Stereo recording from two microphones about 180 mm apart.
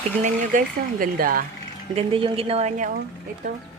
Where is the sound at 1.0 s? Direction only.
50° right (ahead or behind).